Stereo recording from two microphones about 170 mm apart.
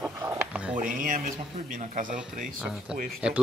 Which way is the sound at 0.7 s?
50° right (ahead or behind).